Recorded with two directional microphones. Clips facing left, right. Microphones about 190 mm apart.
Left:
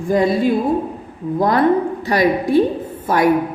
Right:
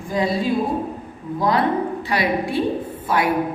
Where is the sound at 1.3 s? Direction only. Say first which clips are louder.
Left 5 dB; 50° left (ahead or behind).